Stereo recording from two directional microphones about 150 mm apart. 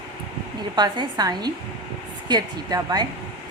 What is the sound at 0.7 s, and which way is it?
A woman's voice, 30° right (ahead or behind).